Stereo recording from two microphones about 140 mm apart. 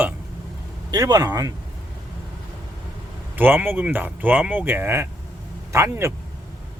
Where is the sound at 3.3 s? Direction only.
15° right (ahead or behind).